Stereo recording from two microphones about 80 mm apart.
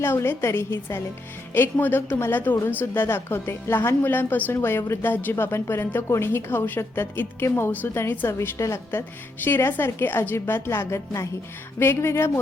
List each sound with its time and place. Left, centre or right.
0.0 s a woman's voice: left
8.4 s a woman's voice: left
8.9 s a woman's voice: left